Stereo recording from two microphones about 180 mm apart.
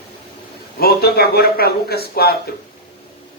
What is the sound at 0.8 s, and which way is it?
A man's voice, 60° left (ahead or behind).